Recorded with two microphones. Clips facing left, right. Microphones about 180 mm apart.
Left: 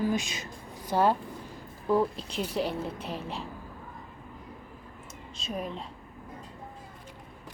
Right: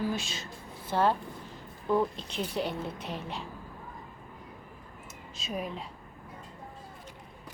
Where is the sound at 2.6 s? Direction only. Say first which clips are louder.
Left 2 dB; 30° left (ahead or behind).